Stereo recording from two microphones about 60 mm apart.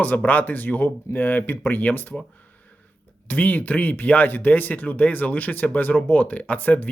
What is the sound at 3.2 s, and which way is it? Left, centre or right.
Speech, left.